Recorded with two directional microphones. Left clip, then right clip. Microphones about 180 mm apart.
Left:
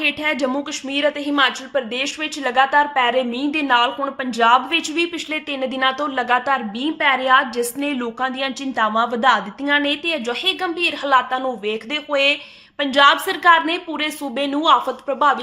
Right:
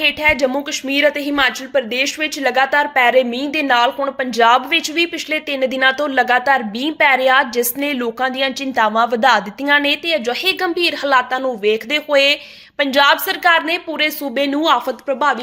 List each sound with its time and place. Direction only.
0.0 s speech: 15° right (ahead or behind)